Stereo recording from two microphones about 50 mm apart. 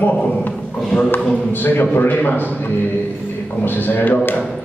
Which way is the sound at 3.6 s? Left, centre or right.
Left.